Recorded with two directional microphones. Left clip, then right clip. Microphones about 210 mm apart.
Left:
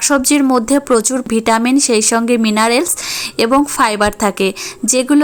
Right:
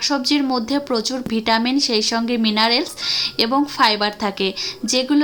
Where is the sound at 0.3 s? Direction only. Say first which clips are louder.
Left 7 dB; 35° left (ahead or behind).